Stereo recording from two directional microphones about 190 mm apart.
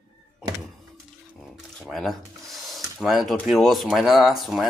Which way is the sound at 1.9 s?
Centre (ahead or behind).